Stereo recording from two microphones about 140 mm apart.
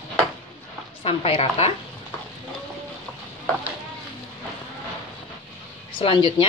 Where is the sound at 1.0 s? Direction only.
45° left (ahead or behind).